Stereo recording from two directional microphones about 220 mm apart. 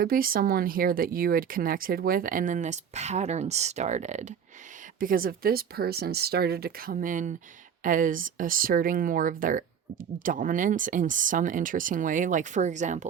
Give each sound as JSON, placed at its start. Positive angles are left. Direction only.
{"t": 0.0, "sound": "speech", "side_deg": -40}